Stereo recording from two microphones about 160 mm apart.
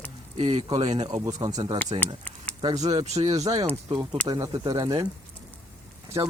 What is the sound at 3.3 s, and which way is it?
Speech, 20° right (ahead or behind).